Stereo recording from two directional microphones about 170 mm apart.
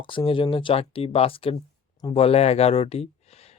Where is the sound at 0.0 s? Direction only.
30° left (ahead or behind).